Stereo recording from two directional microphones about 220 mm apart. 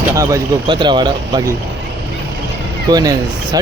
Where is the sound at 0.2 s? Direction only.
15° right (ahead or behind).